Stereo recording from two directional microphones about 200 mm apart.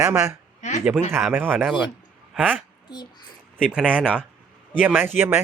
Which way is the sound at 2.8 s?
20° left (ahead or behind).